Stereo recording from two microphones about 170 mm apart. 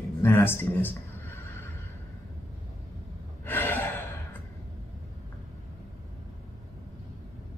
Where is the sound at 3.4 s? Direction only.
10° left (ahead or behind).